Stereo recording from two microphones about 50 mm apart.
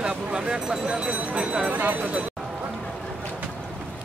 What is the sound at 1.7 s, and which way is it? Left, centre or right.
Speech, right.